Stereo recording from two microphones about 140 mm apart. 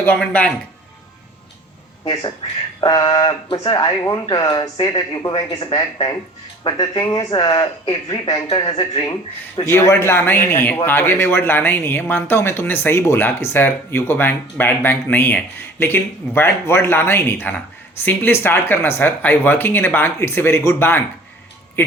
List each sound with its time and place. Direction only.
0.0 s speech: 10° left (ahead or behind)
2.8 s speech: 30° left (ahead or behind)